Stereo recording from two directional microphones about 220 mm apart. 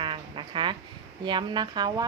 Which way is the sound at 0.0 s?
20° right (ahead or behind).